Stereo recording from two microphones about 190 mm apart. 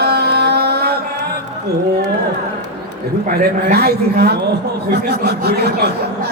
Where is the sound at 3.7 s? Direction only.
55° right (ahead or behind).